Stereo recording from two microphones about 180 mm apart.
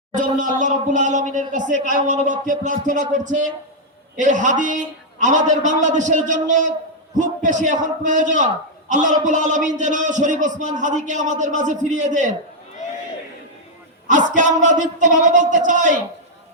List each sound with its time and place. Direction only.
0.1 s a man's voice: 45° right (ahead or behind)
14.1 s a man's voice: 45° right (ahead or behind)